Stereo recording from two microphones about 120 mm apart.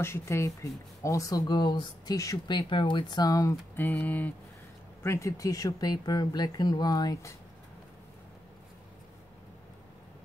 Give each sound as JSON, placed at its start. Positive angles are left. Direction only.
{"t": 0.0, "sound": "speech", "side_deg": 25}
{"t": 2.5, "sound": "speech", "side_deg": 45}
{"t": 3.7, "sound": "speech", "side_deg": 15}
{"t": 5.0, "sound": "speech", "side_deg": 25}